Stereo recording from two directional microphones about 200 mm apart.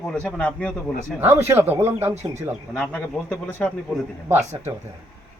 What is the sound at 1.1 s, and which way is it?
Speech, 10° right (ahead or behind).